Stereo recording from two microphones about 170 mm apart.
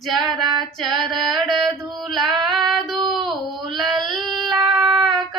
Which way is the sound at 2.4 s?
Centre (ahead or behind).